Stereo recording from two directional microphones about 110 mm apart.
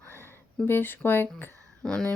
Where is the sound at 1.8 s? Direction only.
5° left (ahead or behind).